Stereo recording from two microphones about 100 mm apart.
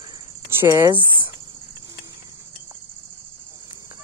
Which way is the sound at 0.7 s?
35° right (ahead or behind).